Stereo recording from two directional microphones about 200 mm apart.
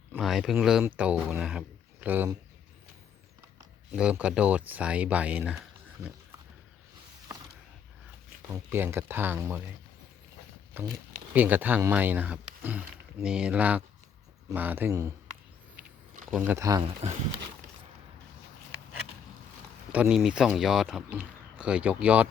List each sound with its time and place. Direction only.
0.1 s speech: centre (ahead or behind)
3.9 s speech: 5° right (ahead or behind)
8.4 s speech: 10° right (ahead or behind)
10.8 s speech: 10° right (ahead or behind)
16.3 s speech: 10° right (ahead or behind)
17.0 s speech: 35° right (ahead or behind)
19.9 s speech: 5° right (ahead or behind)